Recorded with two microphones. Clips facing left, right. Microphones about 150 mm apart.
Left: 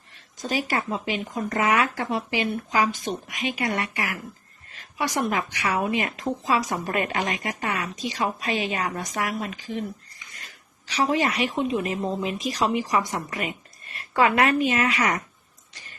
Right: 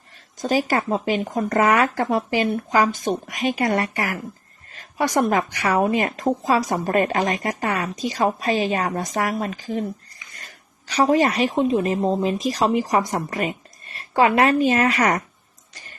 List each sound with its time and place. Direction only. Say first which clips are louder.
0.4 s a woman's voice: right 6 dB; 40° right (ahead or behind)
10.8 s a woman's voice: right 6 dB; 40° right (ahead or behind)